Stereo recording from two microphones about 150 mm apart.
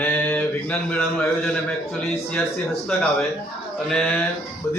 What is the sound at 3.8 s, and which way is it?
Speech, 5° left (ahead or behind).